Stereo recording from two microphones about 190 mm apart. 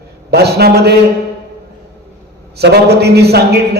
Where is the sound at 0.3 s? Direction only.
55° right (ahead or behind).